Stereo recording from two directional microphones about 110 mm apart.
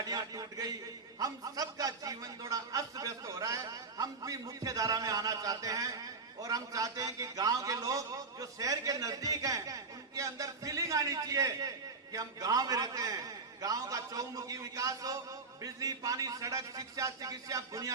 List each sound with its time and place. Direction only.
0.0 s a man's voice: 35° right (ahead or behind)